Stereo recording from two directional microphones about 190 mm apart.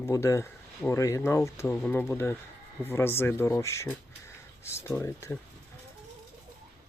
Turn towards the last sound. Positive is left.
turn(degrees=15)  # may be behind; listen again after turning